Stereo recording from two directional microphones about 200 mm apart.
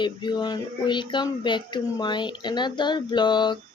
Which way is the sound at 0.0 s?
20° left (ahead or behind).